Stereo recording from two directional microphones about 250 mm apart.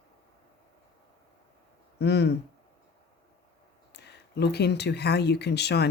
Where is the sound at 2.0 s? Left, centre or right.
Left.